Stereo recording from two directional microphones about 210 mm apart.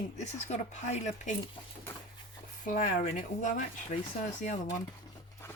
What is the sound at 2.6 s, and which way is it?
Speech, 40° left (ahead or behind).